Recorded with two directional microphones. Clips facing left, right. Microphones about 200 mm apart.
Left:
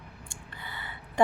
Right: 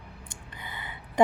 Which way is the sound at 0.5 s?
20° right (ahead or behind).